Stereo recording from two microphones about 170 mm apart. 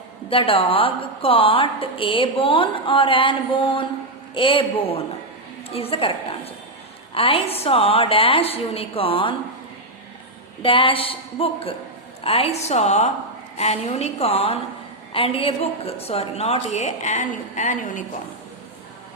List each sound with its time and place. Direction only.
0.3 s a woman's voice: 30° left (ahead or behind)
10.6 s a woman's voice: 30° left (ahead or behind); by 18.0 s 50° left (ahead or behind)